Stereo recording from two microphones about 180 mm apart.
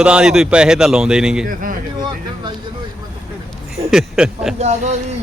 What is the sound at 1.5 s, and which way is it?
Speech, 50° right (ahead or behind).